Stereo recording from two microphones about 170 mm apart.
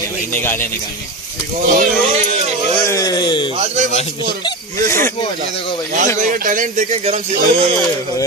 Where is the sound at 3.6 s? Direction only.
45° right (ahead or behind).